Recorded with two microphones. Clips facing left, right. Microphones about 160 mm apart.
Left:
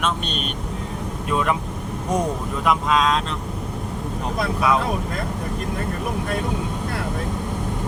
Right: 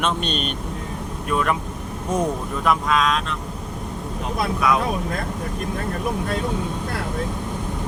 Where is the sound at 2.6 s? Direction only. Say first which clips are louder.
Left 1 dB; 25° left (ahead or behind).